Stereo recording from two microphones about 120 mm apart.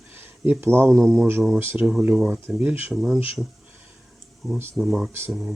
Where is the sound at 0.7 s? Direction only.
15° right (ahead or behind).